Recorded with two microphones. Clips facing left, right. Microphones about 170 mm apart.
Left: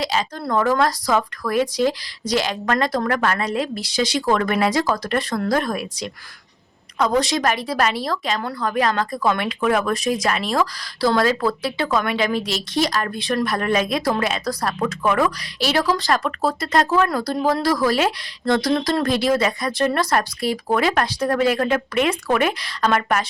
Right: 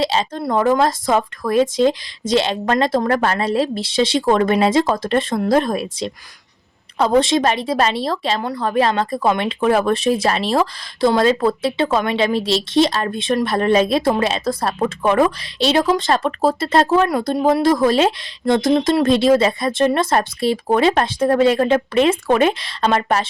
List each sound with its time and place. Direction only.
0.0 s speech: 25° right (ahead or behind)